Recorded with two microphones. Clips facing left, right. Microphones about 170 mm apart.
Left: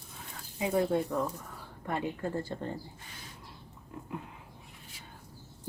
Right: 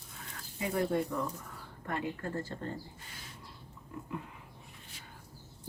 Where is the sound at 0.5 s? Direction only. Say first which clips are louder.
Left 3 dB; 20° left (ahead or behind).